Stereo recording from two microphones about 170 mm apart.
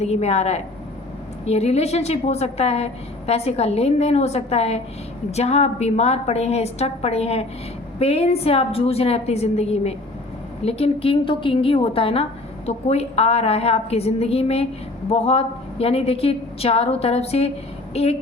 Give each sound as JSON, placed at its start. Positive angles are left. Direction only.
{"t": 0.0, "sound": "a woman's voice", "side_deg": 40}